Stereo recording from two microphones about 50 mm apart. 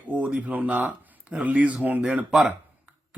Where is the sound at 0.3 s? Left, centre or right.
Right.